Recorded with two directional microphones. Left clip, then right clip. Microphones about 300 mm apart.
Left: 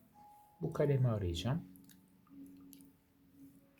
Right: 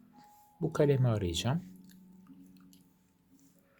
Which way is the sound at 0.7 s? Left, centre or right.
Right.